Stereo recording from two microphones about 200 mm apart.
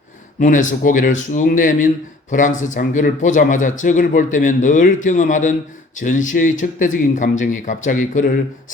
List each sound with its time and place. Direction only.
0.3 s speech: 40° left (ahead or behind)